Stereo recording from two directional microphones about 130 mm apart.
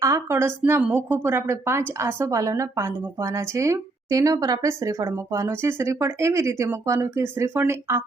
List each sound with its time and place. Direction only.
0.0 s speech: 20° right (ahead or behind)